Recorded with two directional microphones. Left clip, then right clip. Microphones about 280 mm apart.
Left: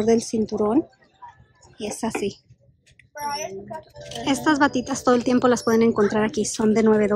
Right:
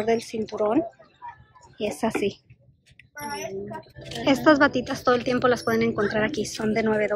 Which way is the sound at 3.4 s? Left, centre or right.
Centre.